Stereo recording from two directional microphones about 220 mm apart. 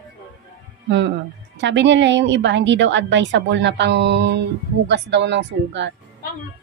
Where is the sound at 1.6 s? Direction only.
55° right (ahead or behind).